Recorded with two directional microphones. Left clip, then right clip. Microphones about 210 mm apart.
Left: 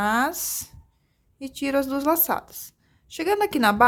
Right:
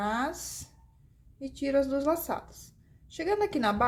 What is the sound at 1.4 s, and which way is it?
A woman's voice, 35° left (ahead or behind).